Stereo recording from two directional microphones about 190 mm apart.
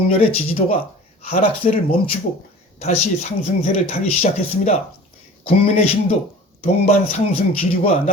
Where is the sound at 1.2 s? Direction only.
30° left (ahead or behind).